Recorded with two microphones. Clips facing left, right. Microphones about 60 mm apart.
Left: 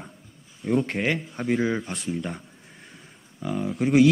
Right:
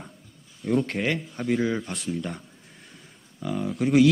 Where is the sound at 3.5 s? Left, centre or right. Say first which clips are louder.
Left 1 dB; centre.